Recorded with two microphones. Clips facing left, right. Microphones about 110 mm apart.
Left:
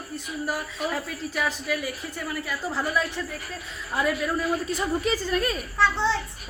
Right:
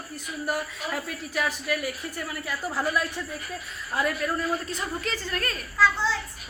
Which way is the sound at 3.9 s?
Centre (ahead or behind).